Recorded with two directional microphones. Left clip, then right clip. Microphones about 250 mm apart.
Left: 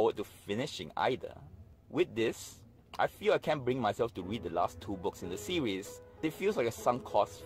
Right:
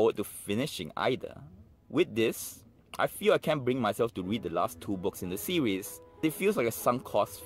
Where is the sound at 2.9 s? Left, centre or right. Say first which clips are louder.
Right 3 dB; right.